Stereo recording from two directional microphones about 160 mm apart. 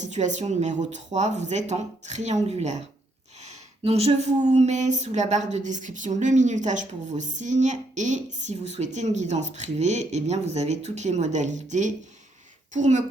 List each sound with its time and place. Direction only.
0.0 s speech: 50° right (ahead or behind)